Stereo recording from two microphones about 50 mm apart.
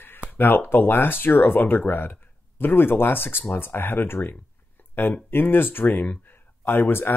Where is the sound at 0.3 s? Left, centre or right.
Left.